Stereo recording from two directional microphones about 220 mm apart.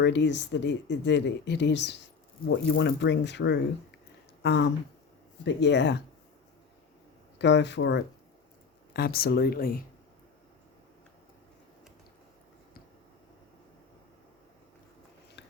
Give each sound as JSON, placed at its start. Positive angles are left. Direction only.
{"t": 0.0, "sound": "speech", "side_deg": 55}
{"t": 7.3, "sound": "speech", "side_deg": 50}